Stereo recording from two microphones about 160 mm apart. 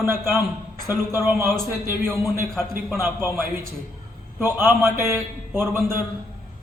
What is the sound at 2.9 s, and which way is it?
A man's voice, 15° right (ahead or behind).